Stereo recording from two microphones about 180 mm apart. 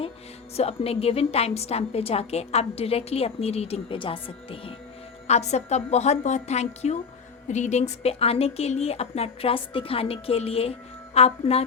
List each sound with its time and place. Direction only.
0.5 s a woman's voice: 35° left (ahead or behind)